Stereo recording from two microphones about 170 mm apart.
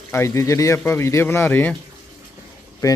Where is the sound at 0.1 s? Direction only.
15° left (ahead or behind).